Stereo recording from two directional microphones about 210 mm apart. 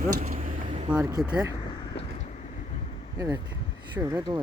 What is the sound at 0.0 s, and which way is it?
Speech, 45° right (ahead or behind).